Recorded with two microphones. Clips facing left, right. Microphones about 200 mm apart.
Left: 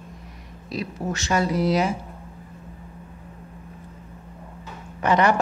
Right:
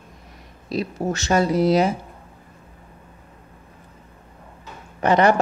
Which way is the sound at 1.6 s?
25° right (ahead or behind).